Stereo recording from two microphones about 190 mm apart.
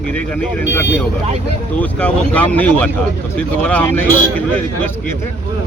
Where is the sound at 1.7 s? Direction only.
10° left (ahead or behind).